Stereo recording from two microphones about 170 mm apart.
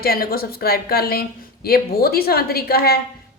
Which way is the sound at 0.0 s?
65° left (ahead or behind).